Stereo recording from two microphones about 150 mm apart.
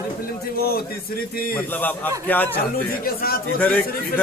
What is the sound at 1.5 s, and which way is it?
Speech, 10° left (ahead or behind).